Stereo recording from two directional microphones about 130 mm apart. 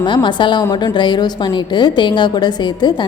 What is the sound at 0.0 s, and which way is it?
A woman's voice, 40° left (ahead or behind).